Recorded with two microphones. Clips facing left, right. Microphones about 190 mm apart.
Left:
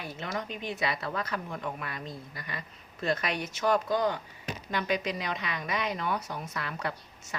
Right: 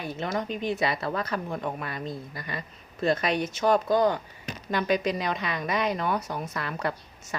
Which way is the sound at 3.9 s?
40° right (ahead or behind).